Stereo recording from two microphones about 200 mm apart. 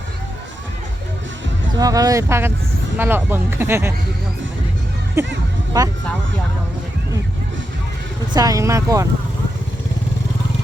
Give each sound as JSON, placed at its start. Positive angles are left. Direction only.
{"t": 1.8, "sound": "speech", "side_deg": -15}
{"t": 5.2, "sound": "speech", "side_deg": -15}
{"t": 8.3, "sound": "speech", "side_deg": -20}